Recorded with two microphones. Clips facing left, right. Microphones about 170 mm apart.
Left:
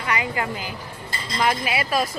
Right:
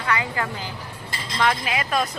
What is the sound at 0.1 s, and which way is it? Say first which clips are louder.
Speech: even; 15° left (ahead or behind).